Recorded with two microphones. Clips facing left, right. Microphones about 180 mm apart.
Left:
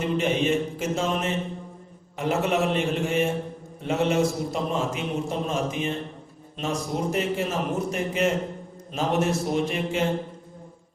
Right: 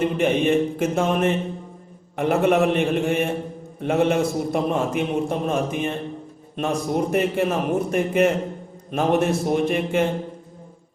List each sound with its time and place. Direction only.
0.0 s a man's voice: 55° right (ahead or behind)